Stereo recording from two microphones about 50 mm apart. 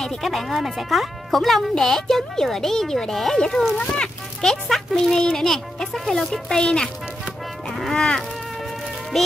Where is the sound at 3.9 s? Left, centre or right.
Centre.